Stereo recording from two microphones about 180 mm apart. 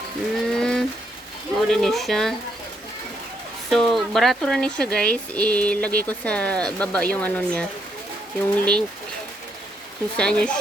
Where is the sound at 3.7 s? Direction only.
Centre (ahead or behind).